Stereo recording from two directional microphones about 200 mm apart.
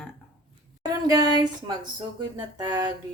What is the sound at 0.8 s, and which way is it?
Speech, 20° right (ahead or behind).